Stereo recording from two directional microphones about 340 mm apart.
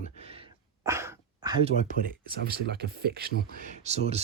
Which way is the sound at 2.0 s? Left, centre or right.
Right.